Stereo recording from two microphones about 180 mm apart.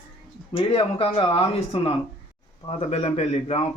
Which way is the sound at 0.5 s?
30° left (ahead or behind).